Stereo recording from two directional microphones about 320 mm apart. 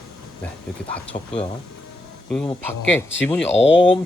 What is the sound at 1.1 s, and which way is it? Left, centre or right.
Speech, left.